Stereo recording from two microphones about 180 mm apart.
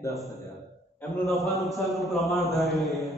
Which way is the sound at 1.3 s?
Centre (ahead or behind).